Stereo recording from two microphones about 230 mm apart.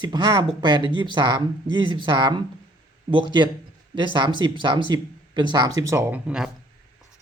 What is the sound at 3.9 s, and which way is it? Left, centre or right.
Speech, centre.